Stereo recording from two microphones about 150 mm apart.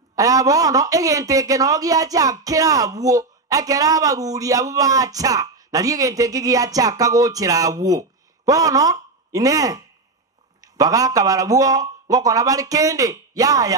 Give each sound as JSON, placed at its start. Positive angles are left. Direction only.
{"t": 0.1, "sound": "a man's voice", "side_deg": -25}